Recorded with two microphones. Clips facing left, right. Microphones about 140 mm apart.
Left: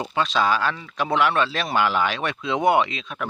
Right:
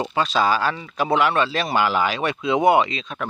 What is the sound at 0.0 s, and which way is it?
Speech, centre (ahead or behind).